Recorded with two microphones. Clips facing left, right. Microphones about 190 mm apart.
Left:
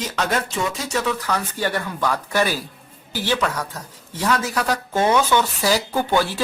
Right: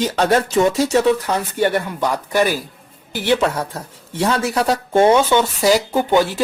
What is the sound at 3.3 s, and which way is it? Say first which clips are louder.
Speech: right 6 dB; 30° right (ahead or behind).